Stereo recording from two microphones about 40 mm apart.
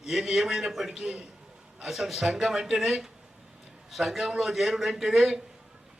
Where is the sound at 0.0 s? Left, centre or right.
Centre.